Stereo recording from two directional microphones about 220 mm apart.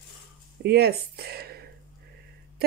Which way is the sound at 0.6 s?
45° right (ahead or behind).